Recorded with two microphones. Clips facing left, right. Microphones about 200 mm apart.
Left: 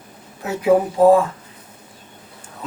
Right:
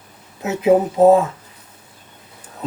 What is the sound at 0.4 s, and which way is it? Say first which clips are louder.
Speech: right 1 dB; 20° right (ahead or behind).